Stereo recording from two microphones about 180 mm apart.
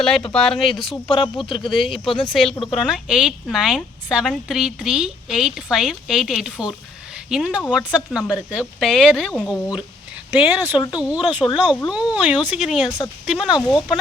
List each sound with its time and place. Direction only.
0.3 s a woman's voice: 5° left (ahead or behind)
1.0 s speech: 25° left (ahead or behind)
1.7 s a woman's voice: centre (ahead or behind)
10.3 s a woman's voice: 10° right (ahead or behind)
13.7 s speech: 20° left (ahead or behind)